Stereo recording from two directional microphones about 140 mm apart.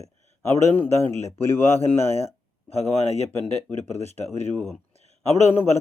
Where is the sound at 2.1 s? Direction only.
55° right (ahead or behind).